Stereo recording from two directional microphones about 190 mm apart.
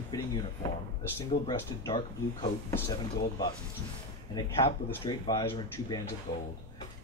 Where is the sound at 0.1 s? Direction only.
20° left (ahead or behind).